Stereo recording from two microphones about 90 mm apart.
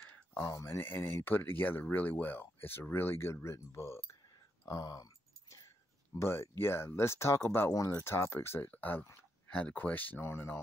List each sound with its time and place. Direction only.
0.0 s a sound: 25° left (ahead or behind)
0.5 s speech: 30° left (ahead or behind)
6.1 s speech: 30° left (ahead or behind)
7.7 s speech: 35° left (ahead or behind)